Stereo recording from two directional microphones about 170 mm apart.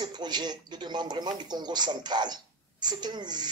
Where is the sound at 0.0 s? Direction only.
25° right (ahead or behind).